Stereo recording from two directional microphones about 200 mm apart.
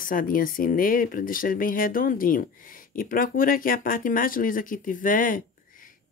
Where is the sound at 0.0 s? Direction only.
45° left (ahead or behind).